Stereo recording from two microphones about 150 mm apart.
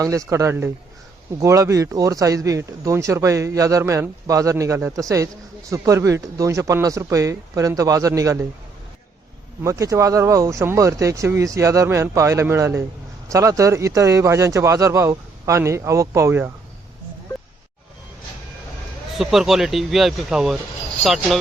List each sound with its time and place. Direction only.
0.0 s speech: 20° right (ahead or behind)
9.6 s speech: 20° right (ahead or behind)
19.1 s a man's voice: centre (ahead or behind)